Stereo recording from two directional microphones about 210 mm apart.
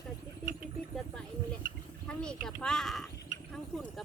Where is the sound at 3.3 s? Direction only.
40° right (ahead or behind).